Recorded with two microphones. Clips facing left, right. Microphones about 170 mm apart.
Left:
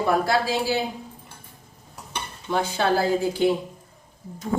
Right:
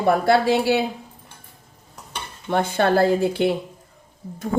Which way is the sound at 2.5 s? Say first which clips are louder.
Right 3 dB; 55° right (ahead or behind).